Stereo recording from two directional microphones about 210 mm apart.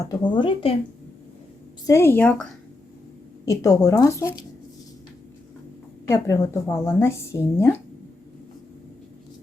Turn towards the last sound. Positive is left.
turn(degrees=10)  # may be behind; listen again after turning